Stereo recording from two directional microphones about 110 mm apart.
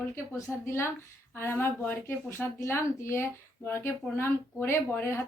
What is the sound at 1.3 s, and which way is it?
Speech, 20° left (ahead or behind).